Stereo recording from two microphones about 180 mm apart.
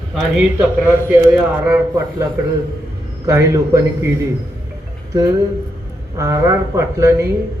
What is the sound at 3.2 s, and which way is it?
Speech, 15° right (ahead or behind).